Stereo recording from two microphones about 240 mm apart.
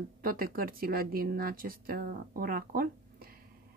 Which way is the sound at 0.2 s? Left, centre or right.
Right.